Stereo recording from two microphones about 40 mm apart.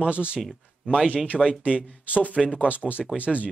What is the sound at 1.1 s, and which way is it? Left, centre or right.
Speech, left.